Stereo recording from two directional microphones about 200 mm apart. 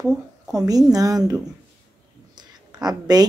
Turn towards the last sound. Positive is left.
turn(degrees=-20)  # may be behind; listen again after turning